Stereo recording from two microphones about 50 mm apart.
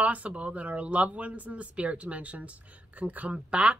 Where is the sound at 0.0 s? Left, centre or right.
Right.